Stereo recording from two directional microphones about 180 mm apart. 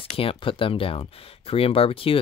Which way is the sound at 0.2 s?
30° left (ahead or behind).